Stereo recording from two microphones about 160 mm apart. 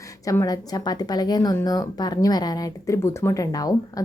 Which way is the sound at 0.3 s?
20° left (ahead or behind).